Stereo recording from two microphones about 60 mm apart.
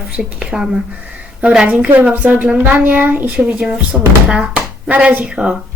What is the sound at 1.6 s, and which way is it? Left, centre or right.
A child's voice, right.